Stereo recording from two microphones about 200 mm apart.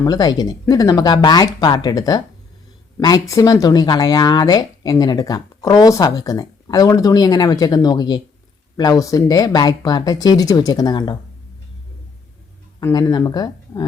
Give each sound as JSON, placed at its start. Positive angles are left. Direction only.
{"t": 0.0, "sound": "speech", "side_deg": 20}
{"t": 12.9, "sound": "speech", "side_deg": 20}